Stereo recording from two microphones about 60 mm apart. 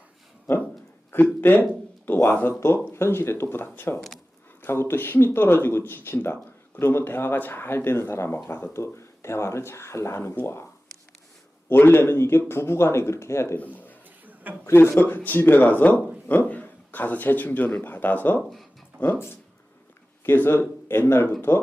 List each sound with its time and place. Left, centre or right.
1.1 s speech: left
11.7 s speech: left
13.6 s speech: left
14.7 s speech: left
20.2 s speech: left